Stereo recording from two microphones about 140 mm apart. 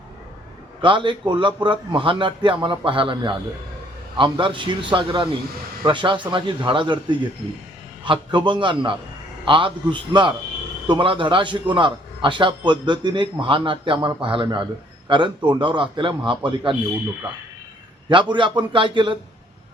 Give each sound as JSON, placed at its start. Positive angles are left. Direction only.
{"t": 0.8, "sound": "a man's voice", "side_deg": -35}
{"t": 18.1, "sound": "a man's voice", "side_deg": -35}